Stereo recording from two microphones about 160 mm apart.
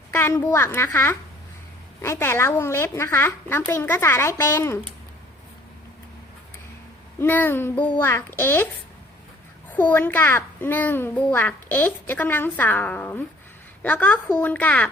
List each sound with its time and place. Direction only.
0.1 s a child's voice: 15° left (ahead or behind)
7.2 s a child's voice: 15° left (ahead or behind)
9.7 s a child's voice: 10° left (ahead or behind)